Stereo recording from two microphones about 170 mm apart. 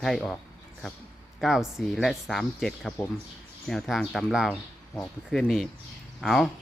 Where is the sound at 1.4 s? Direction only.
Centre (ahead or behind).